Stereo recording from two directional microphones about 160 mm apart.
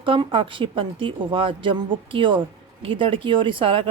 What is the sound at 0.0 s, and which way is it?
Speech, 30° right (ahead or behind).